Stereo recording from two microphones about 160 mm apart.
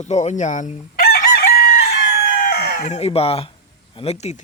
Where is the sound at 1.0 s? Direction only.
85° left.